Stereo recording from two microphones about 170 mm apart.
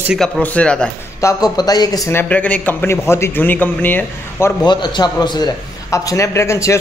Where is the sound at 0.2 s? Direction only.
10° left (ahead or behind).